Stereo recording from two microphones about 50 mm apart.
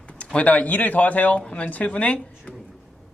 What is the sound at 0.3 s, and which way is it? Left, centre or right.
A man's voice, left.